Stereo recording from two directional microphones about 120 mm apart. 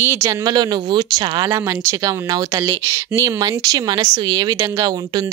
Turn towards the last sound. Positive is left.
turn(degrees=-25)  # may be behind; listen again after turning